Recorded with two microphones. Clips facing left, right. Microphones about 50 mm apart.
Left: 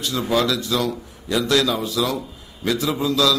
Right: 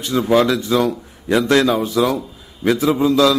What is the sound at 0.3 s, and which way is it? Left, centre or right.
A man's voice, right.